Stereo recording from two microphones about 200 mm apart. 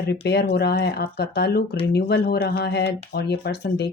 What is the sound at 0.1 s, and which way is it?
Speech, 55° left (ahead or behind).